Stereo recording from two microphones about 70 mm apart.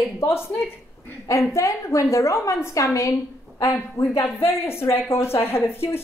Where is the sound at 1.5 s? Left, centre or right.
Left.